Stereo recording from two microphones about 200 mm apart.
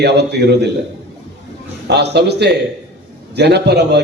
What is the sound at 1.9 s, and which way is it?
A man's voice, 55° right (ahead or behind).